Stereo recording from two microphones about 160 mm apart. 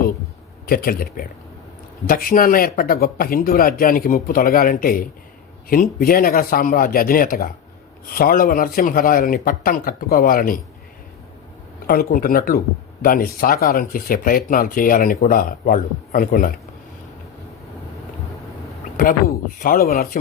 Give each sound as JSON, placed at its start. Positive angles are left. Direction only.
{"t": 0.7, "sound": "speech", "side_deg": 65}
{"t": 11.9, "sound": "speech", "side_deg": 65}
{"t": 19.0, "sound": "speech", "side_deg": 60}